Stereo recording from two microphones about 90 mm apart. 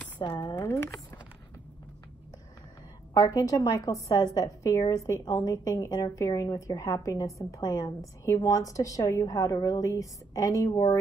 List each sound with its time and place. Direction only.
0.2 s speech: 75° left (ahead or behind)
0.6 s speech: 30° left (ahead or behind)
3.2 s a woman's voice: 40° left (ahead or behind)